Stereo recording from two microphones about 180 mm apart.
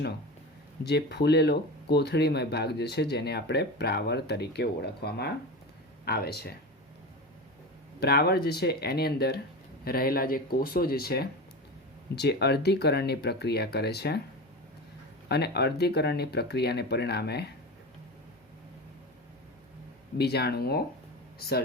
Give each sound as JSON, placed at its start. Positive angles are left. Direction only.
{"t": 0.9, "sound": "speech", "side_deg": 65}
{"t": 7.9, "sound": "speech", "side_deg": 60}
{"t": 15.3, "sound": "speech", "side_deg": 65}
{"t": 20.1, "sound": "speech", "side_deg": 65}